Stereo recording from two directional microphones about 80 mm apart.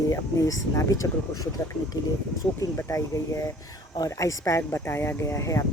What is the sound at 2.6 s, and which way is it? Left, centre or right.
Speech, left.